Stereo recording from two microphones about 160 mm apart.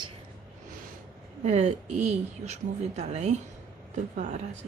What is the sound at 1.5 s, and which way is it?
Speech, 45° right (ahead or behind).